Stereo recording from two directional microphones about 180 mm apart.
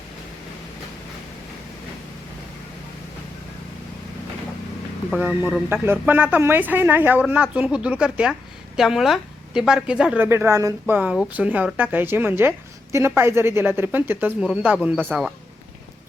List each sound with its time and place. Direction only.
5.1 s speech: 10° right (ahead or behind)